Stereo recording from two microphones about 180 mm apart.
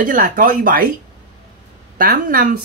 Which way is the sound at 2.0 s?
50° right (ahead or behind).